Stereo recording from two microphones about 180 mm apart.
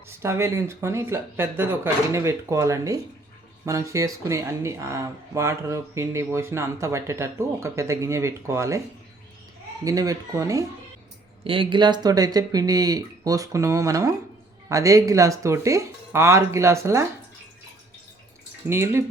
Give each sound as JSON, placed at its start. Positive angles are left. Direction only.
{"t": 0.2, "sound": "speech", "side_deg": -15}
{"t": 9.8, "sound": "speech", "side_deg": -20}
{"t": 11.4, "sound": "speech", "side_deg": -30}
{"t": 18.7, "sound": "speech", "side_deg": -15}